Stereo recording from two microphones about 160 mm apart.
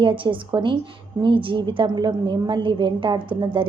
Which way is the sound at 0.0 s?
30° right (ahead or behind).